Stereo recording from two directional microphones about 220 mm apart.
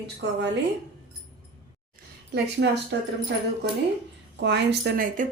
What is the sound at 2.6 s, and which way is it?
Speech, 55° right (ahead or behind).